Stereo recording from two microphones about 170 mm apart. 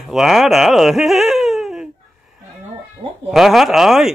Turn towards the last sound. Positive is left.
turn(degrees=0)  # may be behind; listen again after turning